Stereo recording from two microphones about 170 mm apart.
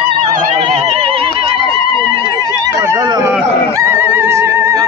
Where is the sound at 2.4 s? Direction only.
20° right (ahead or behind).